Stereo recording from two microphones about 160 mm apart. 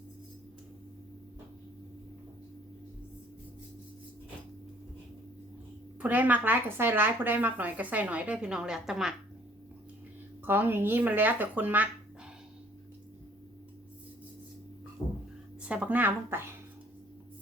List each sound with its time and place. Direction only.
6.0 s speech: 10° right (ahead or behind)
10.4 s speech: 15° right (ahead or behind)
15.0 s a sound: 20° left (ahead or behind)
15.6 s speech: 5° right (ahead or behind)